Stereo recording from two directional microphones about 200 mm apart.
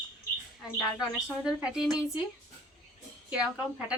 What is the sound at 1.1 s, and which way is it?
A woman's voice, centre (ahead or behind).